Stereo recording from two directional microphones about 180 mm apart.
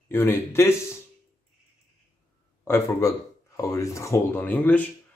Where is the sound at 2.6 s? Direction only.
15° left (ahead or behind).